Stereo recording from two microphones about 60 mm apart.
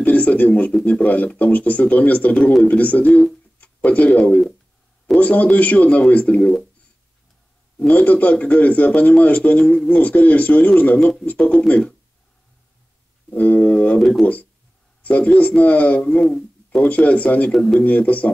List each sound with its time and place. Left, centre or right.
0.0 s speech: left
3.5 s a sound: left
5.2 s speech: left
7.8 s speech: left
13.4 s speech: left
13.9 s speech: centre
14.2 s speech: left
16.0 s speech: centre
16.3 s a sound: centre
16.8 s speech: left
17.5 s speech: centre
17.7 s speech: left